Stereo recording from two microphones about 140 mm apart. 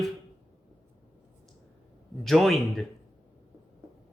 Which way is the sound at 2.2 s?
Centre (ahead or behind).